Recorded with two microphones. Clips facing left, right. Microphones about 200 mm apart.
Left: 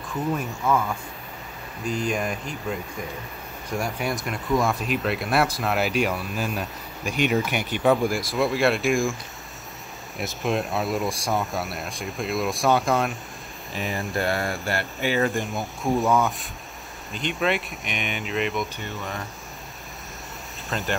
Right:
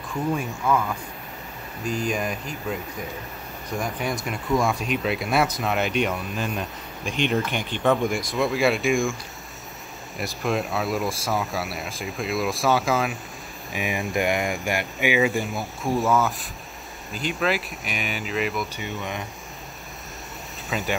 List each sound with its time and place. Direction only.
2.0 s speech: centre (ahead or behind)
10.1 s speech: centre (ahead or behind)
13.7 s speech: 15° right (ahead or behind)
15.2 s speech: centre (ahead or behind)
20.7 s speech: centre (ahead or behind)